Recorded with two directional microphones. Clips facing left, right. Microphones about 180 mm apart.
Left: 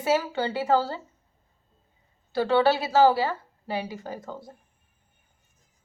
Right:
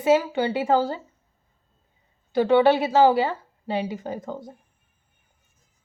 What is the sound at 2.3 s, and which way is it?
A woman's voice, 15° right (ahead or behind).